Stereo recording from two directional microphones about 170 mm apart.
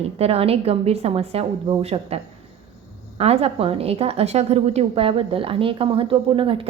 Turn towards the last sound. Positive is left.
turn(degrees=-30)  # may be behind; listen again after turning